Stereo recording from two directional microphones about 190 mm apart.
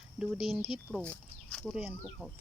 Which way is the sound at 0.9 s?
10° left (ahead or behind).